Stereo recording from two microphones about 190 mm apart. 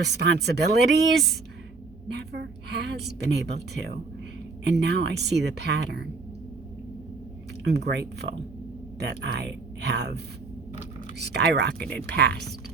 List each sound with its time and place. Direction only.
0.0 s a woman's voice: 60° right (ahead or behind)
2.1 s a woman's voice: 60° right (ahead or behind)
7.6 s a woman's voice: 60° right (ahead or behind)
11.2 s a woman's voice: 60° right (ahead or behind)